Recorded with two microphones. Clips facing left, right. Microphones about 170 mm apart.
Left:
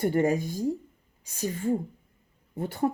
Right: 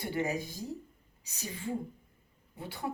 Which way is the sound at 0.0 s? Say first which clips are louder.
Left 9 dB; 50° left (ahead or behind).